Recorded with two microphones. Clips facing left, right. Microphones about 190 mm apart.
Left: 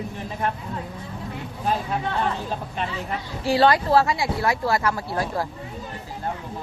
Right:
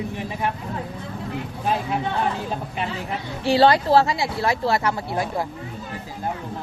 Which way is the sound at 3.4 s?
25° right (ahead or behind).